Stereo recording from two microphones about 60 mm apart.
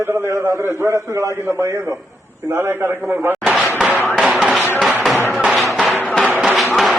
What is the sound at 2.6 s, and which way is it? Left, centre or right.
Speech, right.